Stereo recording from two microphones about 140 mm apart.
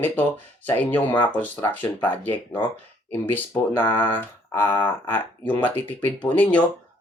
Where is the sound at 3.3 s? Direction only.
15° left (ahead or behind).